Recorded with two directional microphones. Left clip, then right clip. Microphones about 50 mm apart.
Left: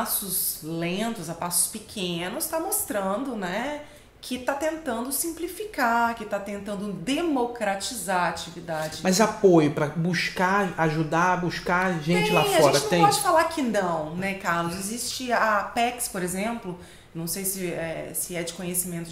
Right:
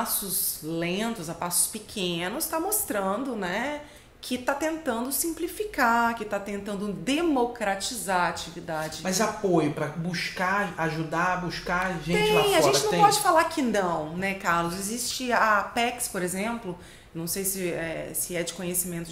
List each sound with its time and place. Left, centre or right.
0.7 s a woman's voice: right
9.0 s speech: left
12.1 s a woman's voice: right